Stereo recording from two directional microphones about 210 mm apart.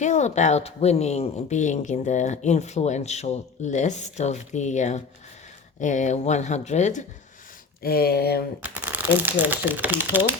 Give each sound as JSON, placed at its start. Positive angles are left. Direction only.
{"t": 0.0, "sound": "speech", "side_deg": 35}
{"t": 7.8, "sound": "speech", "side_deg": 45}
{"t": 8.7, "sound": "speech", "side_deg": -10}